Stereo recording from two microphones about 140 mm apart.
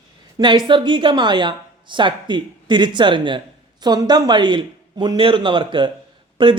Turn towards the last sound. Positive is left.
turn(degrees=-35)  # may be behind; listen again after turning